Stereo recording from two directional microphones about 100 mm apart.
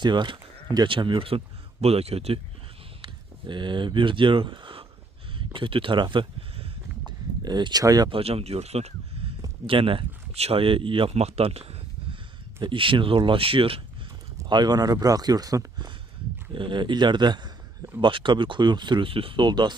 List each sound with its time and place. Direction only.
0.0 s speech: 50° right (ahead or behind)
0.9 s speech: 55° right (ahead or behind)
1.8 s speech: 90° right
3.0 s speech: 55° right (ahead or behind)
8.1 s speech: 80° right
9.6 s speech: 65° right (ahead or behind); by 11.8 s 85° right
12.6 s speech: 60° right (ahead or behind)
14.4 s speech: 45° right (ahead or behind)
16.6 s speech: 55° right (ahead or behind)